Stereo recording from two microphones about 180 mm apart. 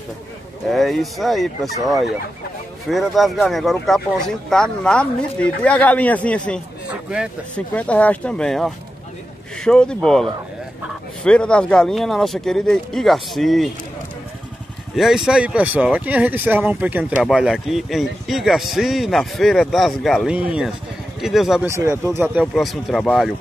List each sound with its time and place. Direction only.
0.7 s speech: centre (ahead or behind)
2.9 s speech: centre (ahead or behind)
6.9 s a man's voice: 5° right (ahead or behind)
7.5 s speech: 5° left (ahead or behind)
15.0 s speech: centre (ahead or behind)
21.6 s speech: 15° right (ahead or behind)
22.4 s speech: centre (ahead or behind)